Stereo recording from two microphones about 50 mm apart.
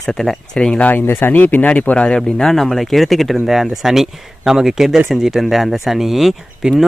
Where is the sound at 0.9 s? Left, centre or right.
Left.